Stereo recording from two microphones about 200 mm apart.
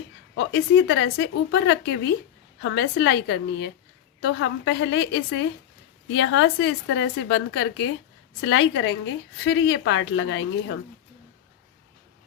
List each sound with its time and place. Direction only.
0.3 s a woman's voice: 70° left (ahead or behind)